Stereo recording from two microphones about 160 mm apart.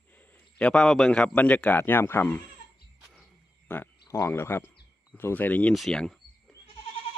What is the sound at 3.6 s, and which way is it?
Speech, 10° left (ahead or behind).